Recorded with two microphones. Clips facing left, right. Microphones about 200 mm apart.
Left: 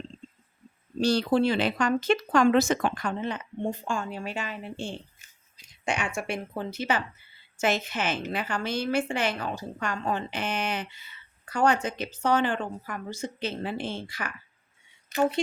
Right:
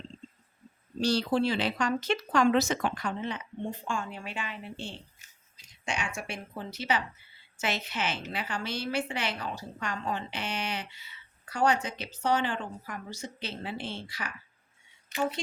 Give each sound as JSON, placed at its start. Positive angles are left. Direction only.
{"t": 1.0, "sound": "speech", "side_deg": 55}
{"t": 5.8, "sound": "speech", "side_deg": 60}